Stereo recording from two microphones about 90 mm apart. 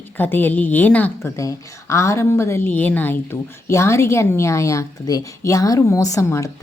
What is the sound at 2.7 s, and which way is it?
A woman's voice, 20° left (ahead or behind).